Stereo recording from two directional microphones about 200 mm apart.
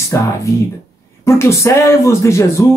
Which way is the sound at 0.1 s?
15° left (ahead or behind).